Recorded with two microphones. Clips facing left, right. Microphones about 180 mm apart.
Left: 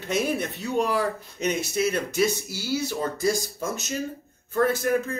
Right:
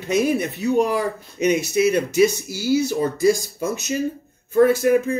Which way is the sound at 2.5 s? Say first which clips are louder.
Right 8 dB; 50° right (ahead or behind).